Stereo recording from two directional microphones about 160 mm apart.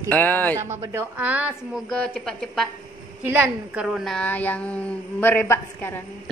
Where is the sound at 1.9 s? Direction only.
5° left (ahead or behind).